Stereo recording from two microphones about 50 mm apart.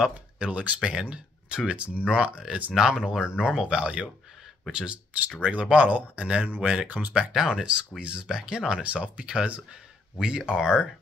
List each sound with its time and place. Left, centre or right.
0.4 s speech: right
2.7 s speech: centre
8.8 s speech: right; by 10.9 s centre